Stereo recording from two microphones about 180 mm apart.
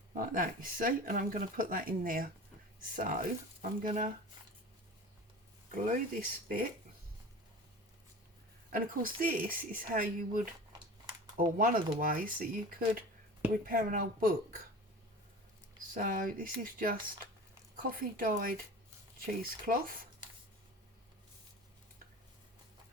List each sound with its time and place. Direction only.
0.2 s speech: 50° right (ahead or behind)
5.7 s speech: 50° right (ahead or behind)
8.7 s speech: 50° right (ahead or behind)
13.5 s speech: 50° right (ahead or behind)
16.0 s speech: 50° right (ahead or behind)